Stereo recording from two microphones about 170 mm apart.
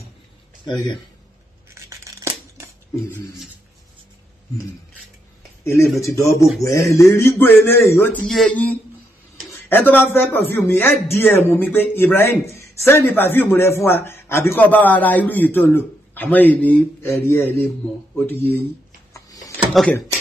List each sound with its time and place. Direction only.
1.9 s scissors: 15° right (ahead or behind)
5.6 s a man's voice: 15° left (ahead or behind)
19.1 s a sound: 20° left (ahead or behind)
19.7 s speech: centre (ahead or behind)